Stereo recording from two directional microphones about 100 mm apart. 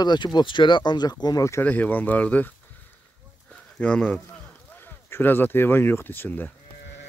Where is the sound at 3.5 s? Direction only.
10° left (ahead or behind).